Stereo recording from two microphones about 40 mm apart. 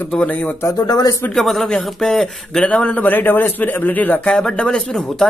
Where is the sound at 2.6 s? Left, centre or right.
Left.